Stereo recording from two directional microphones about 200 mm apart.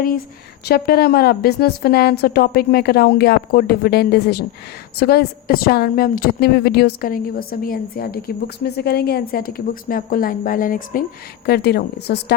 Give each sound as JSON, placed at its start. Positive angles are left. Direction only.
{"t": 0.6, "sound": "a woman's voice", "side_deg": 50}
{"t": 11.4, "sound": "a woman's voice", "side_deg": 55}